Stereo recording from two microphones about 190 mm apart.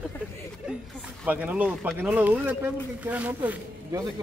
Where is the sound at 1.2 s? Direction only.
10° right (ahead or behind).